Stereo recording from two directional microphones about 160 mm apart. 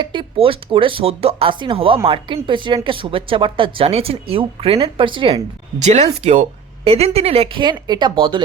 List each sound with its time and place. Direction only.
0.0 s speech: 30° right (ahead or behind)
5.8 s speech: 45° right (ahead or behind)